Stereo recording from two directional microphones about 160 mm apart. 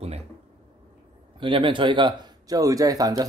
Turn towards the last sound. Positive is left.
turn(degrees=-20)  # may be behind; listen again after turning